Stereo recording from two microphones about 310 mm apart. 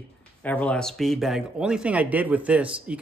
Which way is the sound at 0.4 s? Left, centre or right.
Centre.